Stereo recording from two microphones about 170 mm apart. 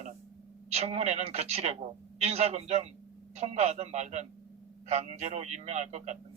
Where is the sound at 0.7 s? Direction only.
40° right (ahead or behind).